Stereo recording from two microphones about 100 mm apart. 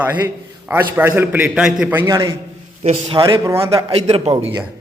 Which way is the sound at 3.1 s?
55° right (ahead or behind).